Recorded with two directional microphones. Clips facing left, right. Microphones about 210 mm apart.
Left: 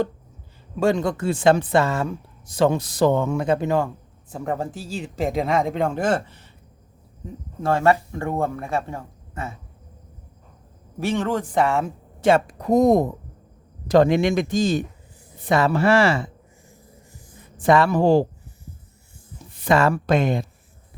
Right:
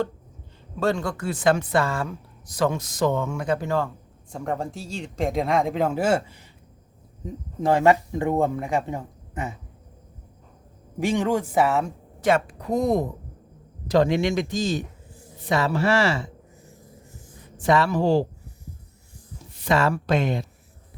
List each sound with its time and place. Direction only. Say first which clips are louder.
0.8 s speech: left 4 dB; 15° left (ahead or behind)
4.3 s a man's voice: left 2 dB; 5° left (ahead or behind); by 9.6 s 15° right (ahead or behind)
11.0 s speech: right 1 dB; 15° right (ahead or behind)
12.5 s speech: left 6 dB; 45° left (ahead or behind)
17.6 s speech: left 4 dB; 55° left (ahead or behind)
19.5 s speech: left 3 dB; 50° left (ahead or behind)